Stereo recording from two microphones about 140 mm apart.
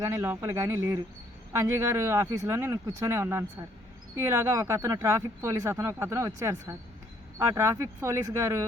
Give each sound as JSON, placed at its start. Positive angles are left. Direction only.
{"t": 0.0, "sound": "speech", "side_deg": -20}